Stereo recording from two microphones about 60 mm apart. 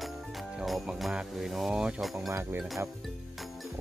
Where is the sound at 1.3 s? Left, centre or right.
Centre.